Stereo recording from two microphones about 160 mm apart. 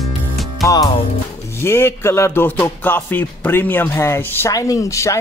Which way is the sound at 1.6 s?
15° left (ahead or behind).